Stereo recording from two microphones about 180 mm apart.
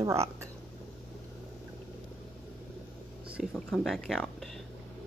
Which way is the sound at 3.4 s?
Centre (ahead or behind).